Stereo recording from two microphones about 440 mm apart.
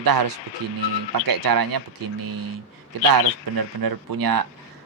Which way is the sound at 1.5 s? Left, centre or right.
Right.